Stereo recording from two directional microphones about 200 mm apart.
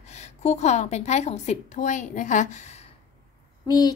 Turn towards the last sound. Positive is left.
turn(degrees=20)  # may be behind; listen again after turning